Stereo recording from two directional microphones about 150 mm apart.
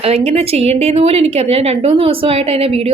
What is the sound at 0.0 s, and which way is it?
A woman's voice, 40° right (ahead or behind).